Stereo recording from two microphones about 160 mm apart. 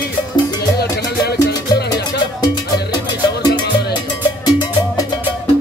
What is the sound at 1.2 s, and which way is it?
Music, 90° left.